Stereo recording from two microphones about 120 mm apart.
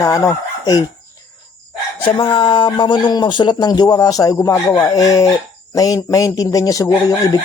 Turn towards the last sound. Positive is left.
turn(degrees=30)  # may be behind; listen again after turning